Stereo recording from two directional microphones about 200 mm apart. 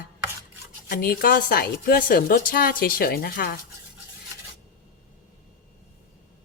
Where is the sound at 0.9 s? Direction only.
50° left (ahead or behind).